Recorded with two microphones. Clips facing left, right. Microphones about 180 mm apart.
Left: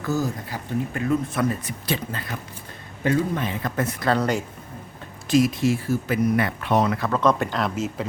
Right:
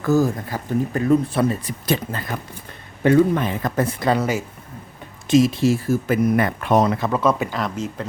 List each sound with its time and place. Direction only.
0.1 s speech: 50° right (ahead or behind)
0.9 s speech: 35° right (ahead or behind)
1.9 s speech: 50° right (ahead or behind)
3.0 s speech: 60° right (ahead or behind)
4.0 s speech: 10° right (ahead or behind)
5.3 s speech: 25° right (ahead or behind); by 6.9 s 45° right (ahead or behind)
6.9 s speech: 20° right (ahead or behind)
7.2 s speech: 5° right (ahead or behind)